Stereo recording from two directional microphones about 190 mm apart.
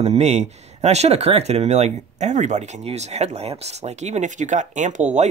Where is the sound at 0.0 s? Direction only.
35° right (ahead or behind).